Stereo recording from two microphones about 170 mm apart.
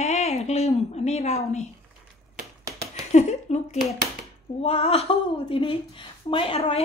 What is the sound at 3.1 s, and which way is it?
Speech, 40° left (ahead or behind).